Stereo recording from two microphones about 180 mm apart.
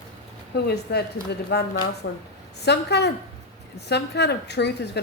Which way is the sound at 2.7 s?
65° left (ahead or behind).